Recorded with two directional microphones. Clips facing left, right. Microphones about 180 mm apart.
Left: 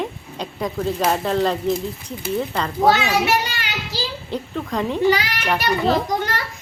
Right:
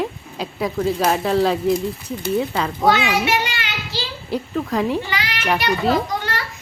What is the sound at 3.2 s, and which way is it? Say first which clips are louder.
Speech: left 1 dB; 40° left (ahead or behind).